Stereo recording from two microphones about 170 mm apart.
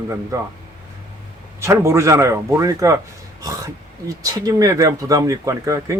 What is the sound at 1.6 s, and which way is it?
A man's voice, 15° right (ahead or behind).